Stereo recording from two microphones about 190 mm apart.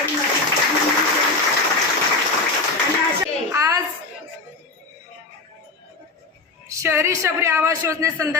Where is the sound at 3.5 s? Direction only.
15° right (ahead or behind).